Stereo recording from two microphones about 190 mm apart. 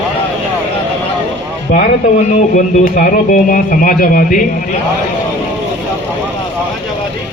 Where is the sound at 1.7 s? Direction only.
45° left (ahead or behind).